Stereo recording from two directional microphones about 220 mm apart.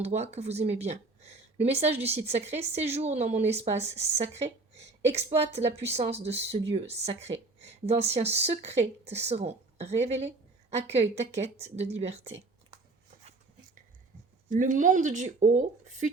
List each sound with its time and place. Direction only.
0.0 s speech: 30° right (ahead or behind)
14.5 s speech: 35° right (ahead or behind)